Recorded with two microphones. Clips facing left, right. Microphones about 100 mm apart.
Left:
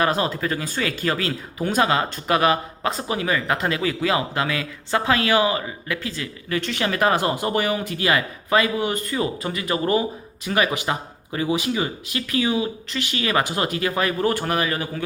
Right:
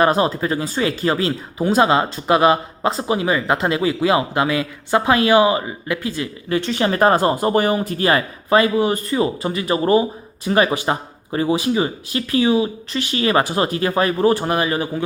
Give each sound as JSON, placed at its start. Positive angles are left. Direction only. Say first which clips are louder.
{"t": 0.0, "sound": "speech", "louder": "right 5 dB", "side_deg": -30}